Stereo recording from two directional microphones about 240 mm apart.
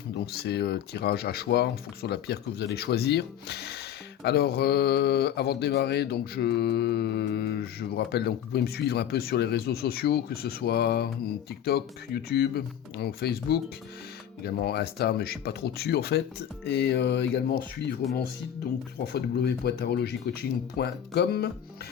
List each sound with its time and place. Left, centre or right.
0.2 s speech: left
19.0 s speech: left